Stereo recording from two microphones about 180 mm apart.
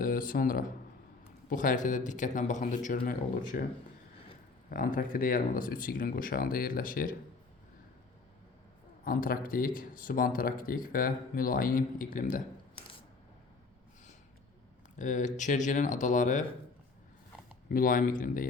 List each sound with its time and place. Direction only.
0.0 s speech: 50° left (ahead or behind)
4.7 s speech: 50° left (ahead or behind)
9.0 s speech: 50° left (ahead or behind)
14.9 s speech: 45° left (ahead or behind)
17.7 s speech: 50° left (ahead or behind)